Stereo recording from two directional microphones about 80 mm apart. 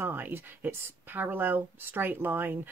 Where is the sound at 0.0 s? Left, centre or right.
Right.